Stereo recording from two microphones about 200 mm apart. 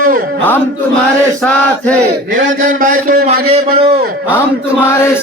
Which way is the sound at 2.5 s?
45° right (ahead or behind).